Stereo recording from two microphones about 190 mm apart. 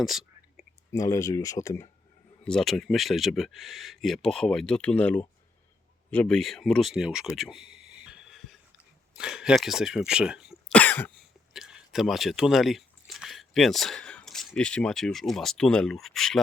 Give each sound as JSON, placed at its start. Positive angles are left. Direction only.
{"t": 0.0, "sound": "whispering", "side_deg": 0}
{"t": 0.9, "sound": "speech", "side_deg": 15}
{"t": 2.4, "sound": "speech", "side_deg": 5}
{"t": 10.7, "sound": "cough", "side_deg": 10}
{"t": 11.5, "sound": "speech", "side_deg": 0}